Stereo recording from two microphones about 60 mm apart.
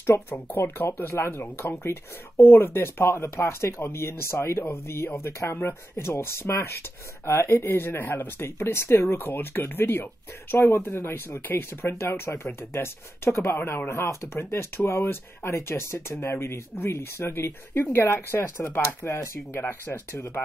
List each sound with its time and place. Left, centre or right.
0.0 s speech: left
13.6 s speech: left
13.8 s speech: left